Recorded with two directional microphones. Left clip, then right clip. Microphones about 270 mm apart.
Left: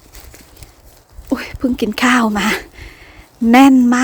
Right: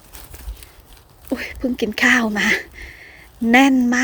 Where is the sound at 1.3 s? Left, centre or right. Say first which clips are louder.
Left 4 dB; centre.